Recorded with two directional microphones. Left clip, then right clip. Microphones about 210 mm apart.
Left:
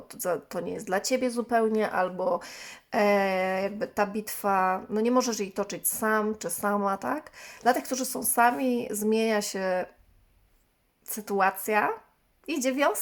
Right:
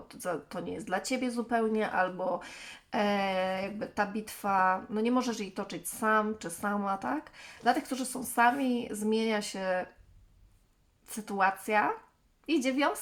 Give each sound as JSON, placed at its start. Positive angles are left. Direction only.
{"t": 0.1, "sound": "speech", "side_deg": 45}
{"t": 11.1, "sound": "speech", "side_deg": 50}